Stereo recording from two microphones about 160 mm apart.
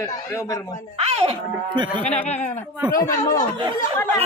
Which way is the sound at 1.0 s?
40° right (ahead or behind).